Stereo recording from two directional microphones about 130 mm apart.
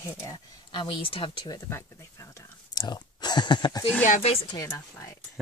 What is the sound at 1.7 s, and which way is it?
Speech, 25° left (ahead or behind).